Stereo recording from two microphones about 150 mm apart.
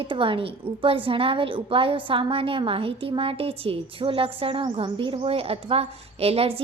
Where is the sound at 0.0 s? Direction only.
35° right (ahead or behind).